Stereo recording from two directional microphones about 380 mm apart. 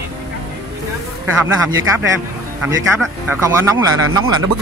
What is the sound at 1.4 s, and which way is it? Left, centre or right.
Speech, right.